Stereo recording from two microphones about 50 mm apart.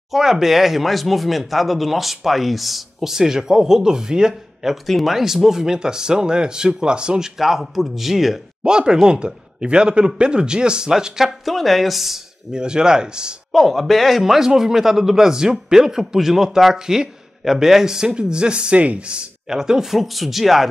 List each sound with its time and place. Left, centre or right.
0.1 s speech: centre
4.8 s a man's voice: centre
7.3 s a man's voice: centre
12.5 s a man's voice: centre
13.5 s a man's voice: centre